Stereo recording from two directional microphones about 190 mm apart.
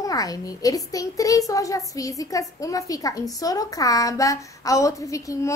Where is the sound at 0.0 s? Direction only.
20° left (ahead or behind).